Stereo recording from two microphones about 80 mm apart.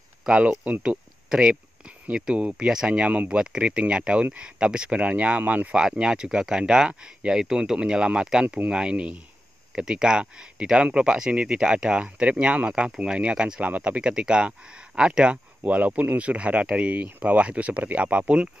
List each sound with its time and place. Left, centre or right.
0.3 s speech: centre
2.0 s speech: centre
5.8 s speech: centre